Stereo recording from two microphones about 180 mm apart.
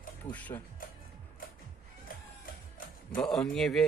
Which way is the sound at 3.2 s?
Centre (ahead or behind).